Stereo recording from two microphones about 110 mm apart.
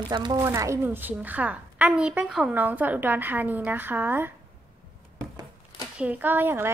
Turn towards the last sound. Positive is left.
turn(degrees=-20)  # may be behind; listen again after turning